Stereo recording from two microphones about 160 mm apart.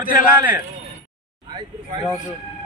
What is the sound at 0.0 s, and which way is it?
Speech, 60° left (ahead or behind).